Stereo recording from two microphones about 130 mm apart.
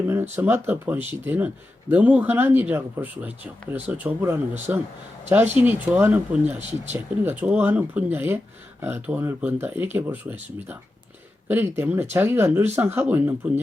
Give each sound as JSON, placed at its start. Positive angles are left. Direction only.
{"t": 0.3, "sound": "speech", "side_deg": -15}